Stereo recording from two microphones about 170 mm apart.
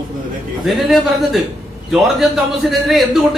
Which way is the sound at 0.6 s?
Centre (ahead or behind).